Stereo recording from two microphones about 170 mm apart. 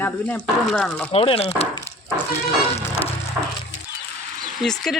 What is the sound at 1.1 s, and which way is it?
Speech, 35° left (ahead or behind).